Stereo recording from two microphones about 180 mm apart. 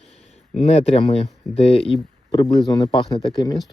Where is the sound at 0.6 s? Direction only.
35° left (ahead or behind).